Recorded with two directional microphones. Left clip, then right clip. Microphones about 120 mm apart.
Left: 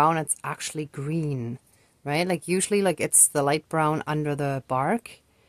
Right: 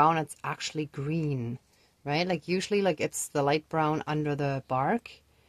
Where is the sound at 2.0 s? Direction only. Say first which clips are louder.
Left 3 dB; 40° left (ahead or behind).